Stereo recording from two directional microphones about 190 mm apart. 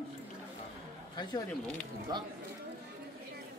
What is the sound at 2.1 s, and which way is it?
Speech, 20° right (ahead or behind).